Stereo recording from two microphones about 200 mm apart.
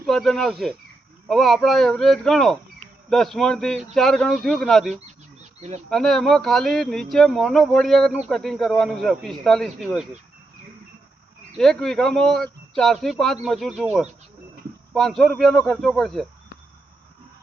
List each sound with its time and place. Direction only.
0.0 s speech: centre (ahead or behind)
5.4 s a sound: 35° right (ahead or behind)
5.9 s speech: centre (ahead or behind)
11.5 s speech: centre (ahead or behind)